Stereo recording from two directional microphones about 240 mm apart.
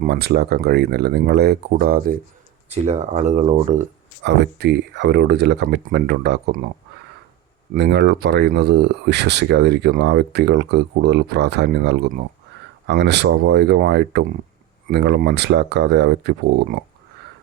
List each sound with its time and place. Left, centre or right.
0.0 s speech: right
2.6 s speech: right
4.2 s speech: right
7.7 s speech: right